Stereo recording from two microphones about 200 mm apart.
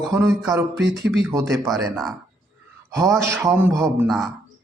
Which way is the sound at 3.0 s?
15° right (ahead or behind).